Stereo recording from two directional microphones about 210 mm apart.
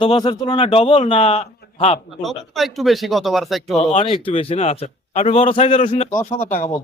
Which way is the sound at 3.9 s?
25° left (ahead or behind).